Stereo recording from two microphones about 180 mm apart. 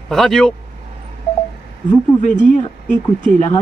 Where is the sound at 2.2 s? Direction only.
45° left (ahead or behind).